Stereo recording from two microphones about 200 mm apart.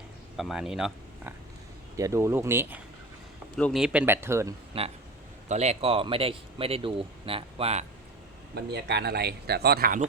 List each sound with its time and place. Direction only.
0.3 s speech: centre (ahead or behind)
2.0 s speech: 15° right (ahead or behind)
4.7 s speech: 30° right (ahead or behind)
8.5 s speech: 55° right (ahead or behind)